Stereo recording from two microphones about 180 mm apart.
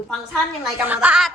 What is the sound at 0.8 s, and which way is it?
Speech, 10° right (ahead or behind).